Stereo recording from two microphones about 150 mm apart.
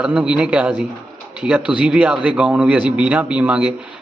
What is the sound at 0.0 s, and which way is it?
Speech, 5° right (ahead or behind).